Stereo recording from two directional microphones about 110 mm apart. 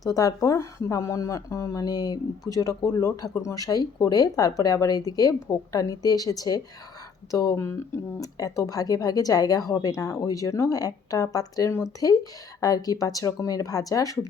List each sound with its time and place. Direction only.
0.1 s speech: 35° left (ahead or behind)